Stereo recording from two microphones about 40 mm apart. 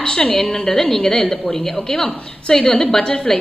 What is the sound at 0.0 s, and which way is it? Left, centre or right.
A woman's voice, left.